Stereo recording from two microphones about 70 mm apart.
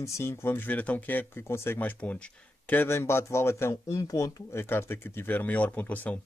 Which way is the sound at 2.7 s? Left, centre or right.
Left.